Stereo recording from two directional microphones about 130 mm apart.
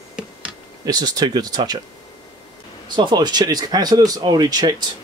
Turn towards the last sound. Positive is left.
turn(degrees=-30)  # may be behind; listen again after turning